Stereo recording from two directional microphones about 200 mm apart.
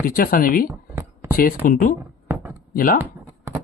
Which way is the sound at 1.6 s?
40° left (ahead or behind).